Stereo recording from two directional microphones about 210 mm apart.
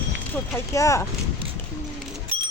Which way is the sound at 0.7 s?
15° left (ahead or behind).